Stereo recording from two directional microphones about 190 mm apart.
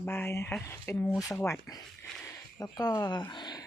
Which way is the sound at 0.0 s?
10° left (ahead or behind).